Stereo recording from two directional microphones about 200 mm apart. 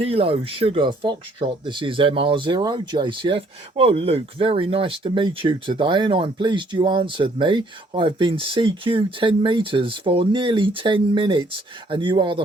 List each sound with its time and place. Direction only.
0.0 s speech: 30° right (ahead or behind)